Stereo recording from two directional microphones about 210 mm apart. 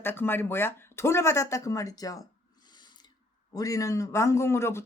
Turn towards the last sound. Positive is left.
turn(degrees=10)  # may be behind; listen again after turning